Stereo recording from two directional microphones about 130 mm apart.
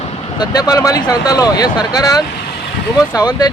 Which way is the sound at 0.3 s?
30° left (ahead or behind).